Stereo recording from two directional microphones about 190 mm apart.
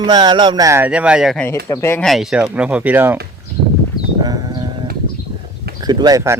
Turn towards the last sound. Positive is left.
turn(degrees=-15)  # may be behind; listen again after turning